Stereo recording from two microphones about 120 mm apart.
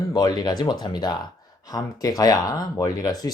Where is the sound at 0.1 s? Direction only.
35° left (ahead or behind).